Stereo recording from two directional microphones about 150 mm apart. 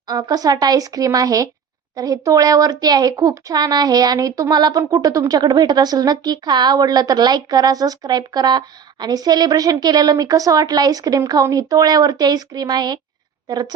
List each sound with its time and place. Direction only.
0.1 s a woman's voice: 25° right (ahead or behind)